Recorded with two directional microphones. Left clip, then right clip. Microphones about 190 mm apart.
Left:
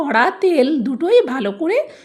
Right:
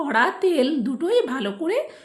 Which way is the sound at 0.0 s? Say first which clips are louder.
Left 5 dB; 40° left (ahead or behind).